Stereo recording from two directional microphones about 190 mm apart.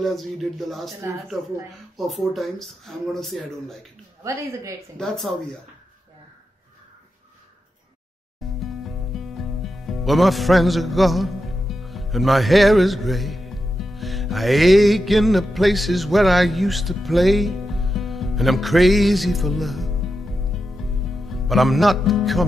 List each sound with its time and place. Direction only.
0.0 s speech: centre (ahead or behind)
4.2 s a woman's voice: 15° right (ahead or behind)
4.9 s speech: 5° left (ahead or behind)
8.6 s music: centre (ahead or behind)